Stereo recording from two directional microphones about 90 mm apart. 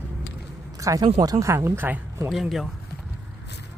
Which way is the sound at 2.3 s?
Centre (ahead or behind).